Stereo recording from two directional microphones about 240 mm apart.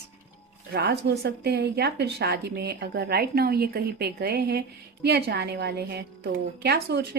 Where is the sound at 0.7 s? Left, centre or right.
Right.